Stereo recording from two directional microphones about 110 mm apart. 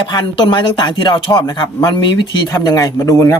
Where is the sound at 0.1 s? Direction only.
45° left (ahead or behind); by 3.3 s 25° left (ahead or behind).